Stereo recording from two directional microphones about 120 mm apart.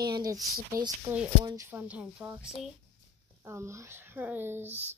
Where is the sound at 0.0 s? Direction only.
35° right (ahead or behind).